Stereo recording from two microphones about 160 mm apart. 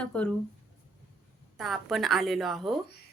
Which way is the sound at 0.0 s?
5° left (ahead or behind).